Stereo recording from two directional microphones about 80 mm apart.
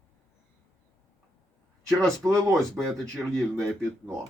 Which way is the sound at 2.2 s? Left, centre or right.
Right.